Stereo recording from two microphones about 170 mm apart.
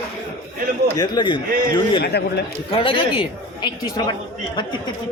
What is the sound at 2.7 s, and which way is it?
Speech, 30° left (ahead or behind).